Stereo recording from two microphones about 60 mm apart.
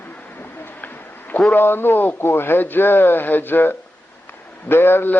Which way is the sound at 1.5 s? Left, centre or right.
Left.